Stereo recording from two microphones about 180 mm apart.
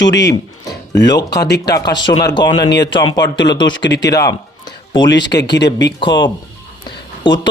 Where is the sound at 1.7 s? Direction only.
20° left (ahead or behind).